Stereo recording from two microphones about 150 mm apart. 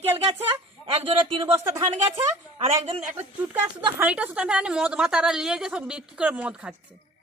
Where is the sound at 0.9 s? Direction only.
35° right (ahead or behind).